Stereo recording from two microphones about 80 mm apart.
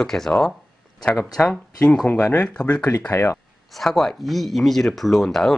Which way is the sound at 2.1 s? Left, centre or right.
Left.